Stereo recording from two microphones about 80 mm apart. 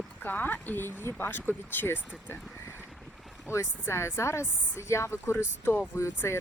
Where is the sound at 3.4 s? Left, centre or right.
Left.